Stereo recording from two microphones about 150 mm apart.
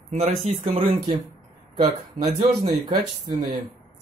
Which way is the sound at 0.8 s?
60° right (ahead or behind).